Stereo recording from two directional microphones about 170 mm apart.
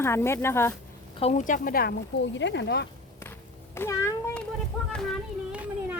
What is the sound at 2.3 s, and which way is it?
Speech, 90° left.